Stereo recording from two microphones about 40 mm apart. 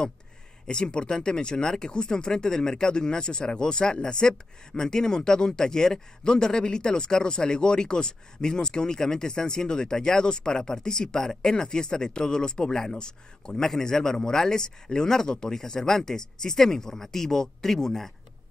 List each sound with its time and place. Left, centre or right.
0.7 s speech: left
13.6 s speech: centre